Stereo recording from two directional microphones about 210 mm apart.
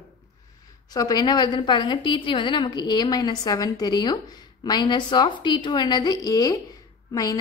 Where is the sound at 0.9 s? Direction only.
20° left (ahead or behind).